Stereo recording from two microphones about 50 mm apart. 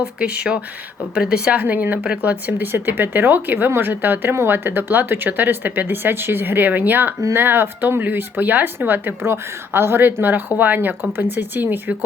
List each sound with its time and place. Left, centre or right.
0.2 s a woman's voice: right
2.6 s speech: right
9.2 s speech: right